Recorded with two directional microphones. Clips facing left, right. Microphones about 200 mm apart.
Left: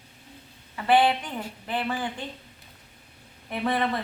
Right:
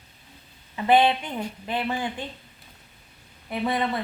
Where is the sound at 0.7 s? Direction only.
20° right (ahead or behind).